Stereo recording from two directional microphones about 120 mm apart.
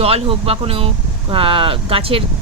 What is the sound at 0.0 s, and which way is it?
Speech, 55° right (ahead or behind).